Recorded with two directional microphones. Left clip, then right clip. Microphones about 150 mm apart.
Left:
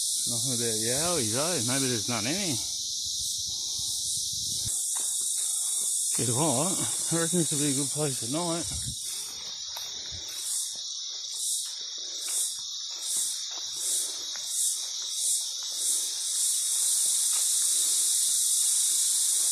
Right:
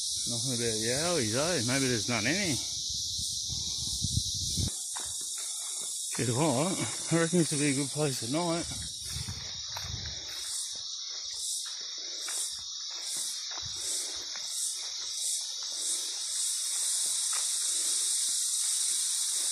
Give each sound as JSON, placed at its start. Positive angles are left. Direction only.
{"t": 0.3, "sound": "speech", "side_deg": 5}
{"t": 6.1, "sound": "speech", "side_deg": 0}
{"t": 7.1, "sound": "speech", "side_deg": -20}
{"t": 7.3, "sound": "speech", "side_deg": -5}